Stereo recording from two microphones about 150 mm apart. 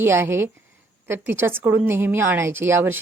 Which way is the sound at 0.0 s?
15° right (ahead or behind).